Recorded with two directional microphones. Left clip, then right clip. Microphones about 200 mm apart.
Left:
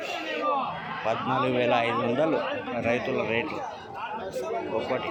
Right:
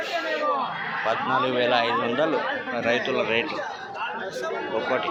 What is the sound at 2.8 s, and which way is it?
Speech, 15° left (ahead or behind).